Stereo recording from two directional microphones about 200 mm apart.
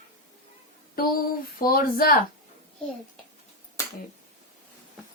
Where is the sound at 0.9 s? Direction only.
45° left (ahead or behind).